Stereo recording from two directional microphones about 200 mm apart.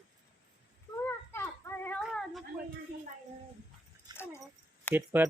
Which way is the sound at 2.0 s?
Centre (ahead or behind).